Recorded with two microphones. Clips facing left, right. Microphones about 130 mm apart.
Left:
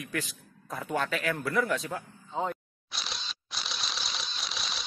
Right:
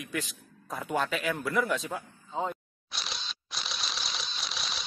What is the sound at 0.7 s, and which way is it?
A man's voice, 5° right (ahead or behind).